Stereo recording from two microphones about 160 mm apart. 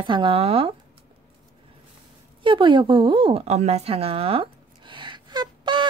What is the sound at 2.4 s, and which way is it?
A woman's voice, 30° right (ahead or behind).